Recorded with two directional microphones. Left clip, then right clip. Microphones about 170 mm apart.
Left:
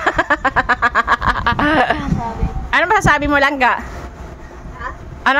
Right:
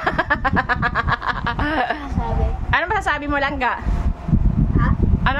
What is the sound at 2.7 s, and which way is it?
A woman's voice, 30° left (ahead or behind).